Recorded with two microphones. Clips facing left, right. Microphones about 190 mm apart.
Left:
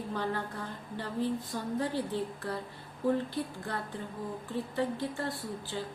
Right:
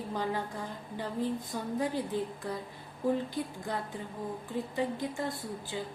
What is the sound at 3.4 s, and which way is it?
A woman's voice, 15° right (ahead or behind).